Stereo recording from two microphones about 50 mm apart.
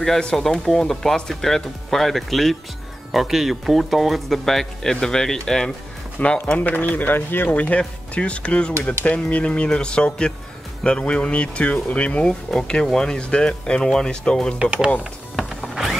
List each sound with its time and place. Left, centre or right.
0.2 s speech: centre
6.2 s speech: left
6.9 s speech: left
7.5 s speech: left
14.6 s speech: right
15.3 s music: centre